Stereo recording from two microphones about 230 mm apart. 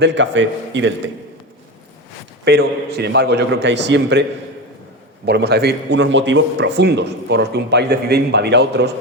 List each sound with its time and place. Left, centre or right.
0.0 s a man's voice: right
2.4 s a man's voice: right